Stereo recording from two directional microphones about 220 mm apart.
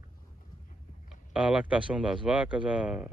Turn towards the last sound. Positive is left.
turn(degrees=-5)  # may be behind; listen again after turning